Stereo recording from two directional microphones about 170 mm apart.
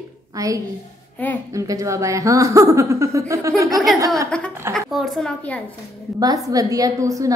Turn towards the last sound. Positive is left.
turn(degrees=-20)  # may be behind; listen again after turning